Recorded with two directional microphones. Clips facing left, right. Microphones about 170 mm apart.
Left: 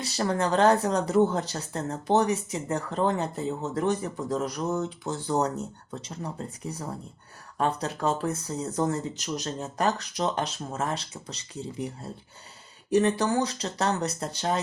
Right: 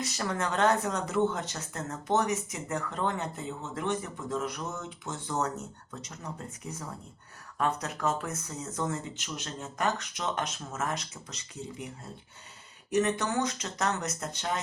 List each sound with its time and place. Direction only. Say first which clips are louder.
0.0 s speech: left 5 dB; 30° left (ahead or behind)